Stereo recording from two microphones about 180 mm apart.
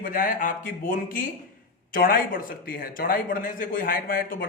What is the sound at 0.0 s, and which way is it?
Speech, 50° left (ahead or behind).